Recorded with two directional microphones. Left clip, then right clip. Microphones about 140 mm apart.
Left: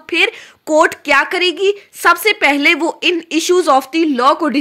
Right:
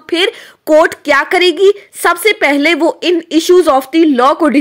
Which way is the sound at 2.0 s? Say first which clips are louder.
Right 1 dB; 35° right (ahead or behind).